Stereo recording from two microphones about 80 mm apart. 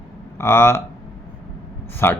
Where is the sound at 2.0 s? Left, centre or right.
Left.